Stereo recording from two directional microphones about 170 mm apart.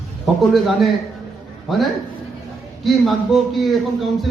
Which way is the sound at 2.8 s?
Centre (ahead or behind).